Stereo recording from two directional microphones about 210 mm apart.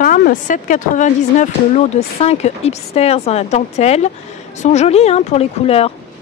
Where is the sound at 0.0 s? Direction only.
40° left (ahead or behind).